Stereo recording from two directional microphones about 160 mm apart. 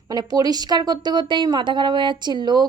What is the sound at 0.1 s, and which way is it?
Speech, 25° right (ahead or behind).